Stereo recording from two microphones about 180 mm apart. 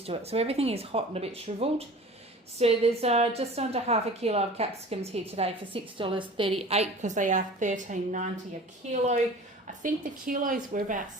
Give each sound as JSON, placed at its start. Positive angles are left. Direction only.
{"t": 0.0, "sound": "a woman's voice", "side_deg": -35}